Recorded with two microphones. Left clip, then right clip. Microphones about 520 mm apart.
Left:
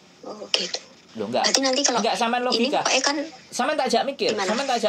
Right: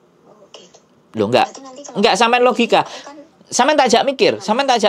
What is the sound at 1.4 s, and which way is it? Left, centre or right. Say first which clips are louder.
Speech: left 11 dB; left.